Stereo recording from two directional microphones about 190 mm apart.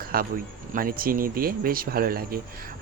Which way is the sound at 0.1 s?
50° right (ahead or behind).